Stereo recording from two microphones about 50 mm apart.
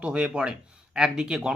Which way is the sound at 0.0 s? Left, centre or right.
Centre.